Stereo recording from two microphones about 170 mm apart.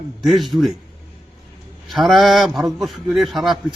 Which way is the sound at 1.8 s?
Centre (ahead or behind).